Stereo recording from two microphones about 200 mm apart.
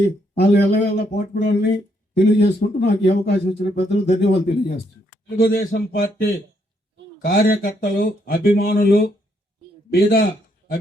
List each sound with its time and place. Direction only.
0.3 s speech: 55° left (ahead or behind)
5.4 s speech: 50° left (ahead or behind)